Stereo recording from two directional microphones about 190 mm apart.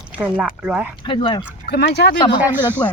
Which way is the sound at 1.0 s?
25° left (ahead or behind).